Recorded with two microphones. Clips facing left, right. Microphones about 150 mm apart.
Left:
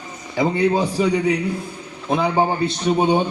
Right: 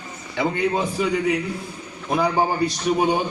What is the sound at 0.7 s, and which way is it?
Speech, 35° left (ahead or behind).